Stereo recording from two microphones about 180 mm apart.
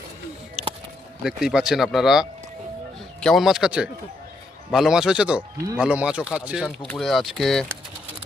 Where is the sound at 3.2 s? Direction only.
Centre (ahead or behind).